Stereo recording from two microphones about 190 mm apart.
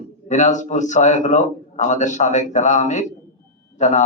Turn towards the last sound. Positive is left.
turn(degrees=40)  # may be behind; listen again after turning